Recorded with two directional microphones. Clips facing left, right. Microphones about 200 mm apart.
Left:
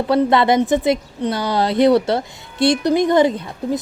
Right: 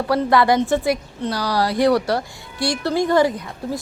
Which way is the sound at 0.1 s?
25° left (ahead or behind).